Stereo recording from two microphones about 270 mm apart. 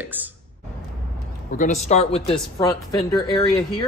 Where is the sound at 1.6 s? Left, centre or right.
Left.